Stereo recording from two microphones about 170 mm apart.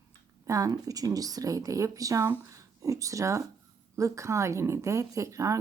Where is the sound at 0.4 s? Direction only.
20° right (ahead or behind).